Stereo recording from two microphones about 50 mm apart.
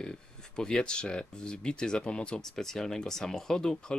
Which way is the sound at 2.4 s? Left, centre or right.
Centre.